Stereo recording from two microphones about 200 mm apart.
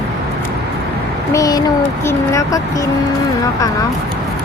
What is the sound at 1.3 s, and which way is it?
Speech, 20° left (ahead or behind).